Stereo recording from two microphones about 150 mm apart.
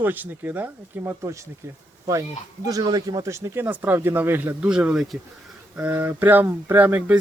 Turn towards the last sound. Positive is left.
turn(degrees=-10)  # may be behind; listen again after turning